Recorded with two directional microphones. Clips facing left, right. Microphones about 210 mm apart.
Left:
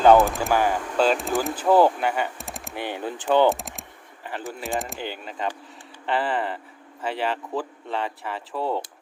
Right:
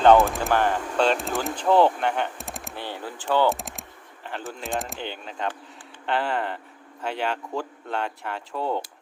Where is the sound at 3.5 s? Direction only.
Centre (ahead or behind).